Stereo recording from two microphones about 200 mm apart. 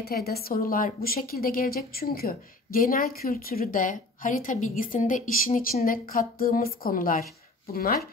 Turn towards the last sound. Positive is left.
turn(degrees=50)  # may be behind; listen again after turning